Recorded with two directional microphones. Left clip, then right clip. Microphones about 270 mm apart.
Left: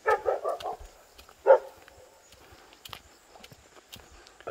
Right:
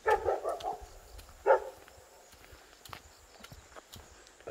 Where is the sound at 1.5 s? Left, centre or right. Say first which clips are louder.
Left 7 dB; left.